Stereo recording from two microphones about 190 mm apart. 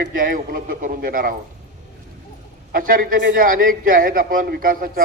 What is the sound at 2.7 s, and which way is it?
A man's voice, 45° right (ahead or behind).